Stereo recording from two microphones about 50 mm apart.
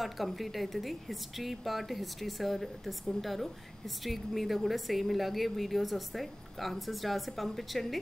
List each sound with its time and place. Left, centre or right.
0.0 s a woman's voice: centre